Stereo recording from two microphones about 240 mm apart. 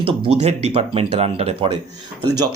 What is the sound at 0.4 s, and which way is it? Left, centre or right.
Speech, right.